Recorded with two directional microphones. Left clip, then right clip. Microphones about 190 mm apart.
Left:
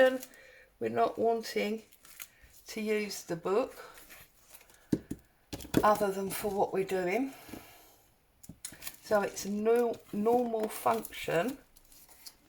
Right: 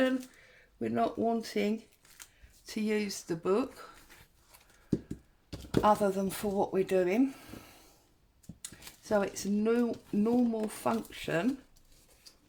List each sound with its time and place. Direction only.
0.8 s speech: 35° right (ahead or behind)
5.8 s speech: 40° right (ahead or behind)
9.0 s speech: 30° right (ahead or behind)